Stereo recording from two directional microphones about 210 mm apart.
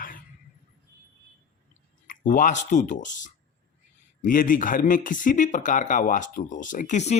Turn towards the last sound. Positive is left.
turn(degrees=35)  # may be behind; listen again after turning